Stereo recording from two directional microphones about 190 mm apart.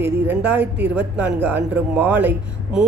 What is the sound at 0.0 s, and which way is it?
Speech, 10° right (ahead or behind).